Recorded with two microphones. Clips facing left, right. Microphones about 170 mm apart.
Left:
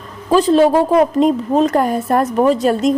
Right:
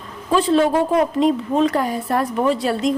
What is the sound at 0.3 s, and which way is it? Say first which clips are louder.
A woman's voice: left 5 dB; 40° left (ahead or behind).